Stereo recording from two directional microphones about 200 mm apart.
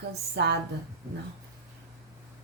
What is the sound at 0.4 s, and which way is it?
Speech, 60° right (ahead or behind).